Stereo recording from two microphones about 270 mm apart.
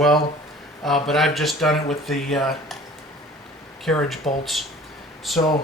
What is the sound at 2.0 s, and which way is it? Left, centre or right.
Speech, centre.